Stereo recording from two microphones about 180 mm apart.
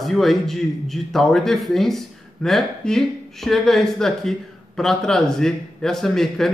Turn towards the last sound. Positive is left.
turn(degrees=0)  # may be behind; listen again after turning